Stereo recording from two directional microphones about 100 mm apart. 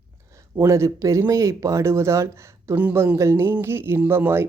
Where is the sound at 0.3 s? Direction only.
30° right (ahead or behind).